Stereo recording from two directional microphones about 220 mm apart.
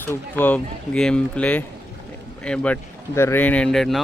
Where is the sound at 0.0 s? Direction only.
10° left (ahead or behind).